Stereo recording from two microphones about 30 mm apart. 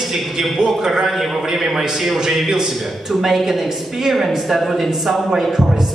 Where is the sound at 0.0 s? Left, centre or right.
Centre.